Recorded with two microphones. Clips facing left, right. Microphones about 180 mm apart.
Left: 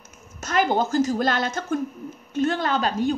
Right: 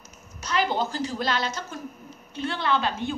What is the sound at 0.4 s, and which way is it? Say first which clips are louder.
A woman's voice: left 4 dB; 50° left (ahead or behind).